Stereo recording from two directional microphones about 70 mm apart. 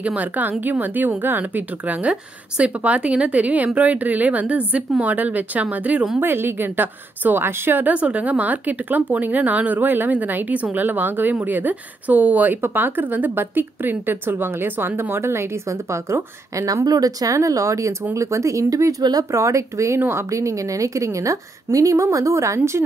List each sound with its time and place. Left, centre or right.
0.0 s a woman's voice: right
6.1 s a woman's voice: right
16.6 s a woman's voice: right
20.0 s a woman's voice: right
20.2 s a woman's voice: right